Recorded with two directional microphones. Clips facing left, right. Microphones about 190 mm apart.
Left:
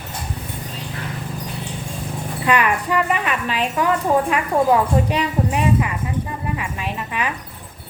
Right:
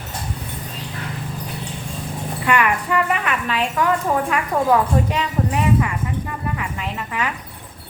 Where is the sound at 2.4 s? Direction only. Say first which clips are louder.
Left 1 dB; 20° left (ahead or behind).